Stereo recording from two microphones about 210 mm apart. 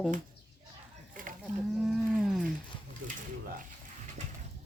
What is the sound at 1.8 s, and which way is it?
Livestock, centre (ahead or behind).